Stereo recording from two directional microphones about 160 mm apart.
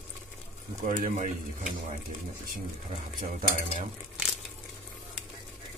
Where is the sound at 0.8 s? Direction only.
55° right (ahead or behind).